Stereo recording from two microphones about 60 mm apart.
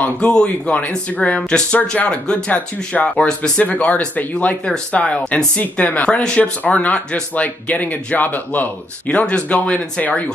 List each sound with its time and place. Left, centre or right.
0.0 s speech: centre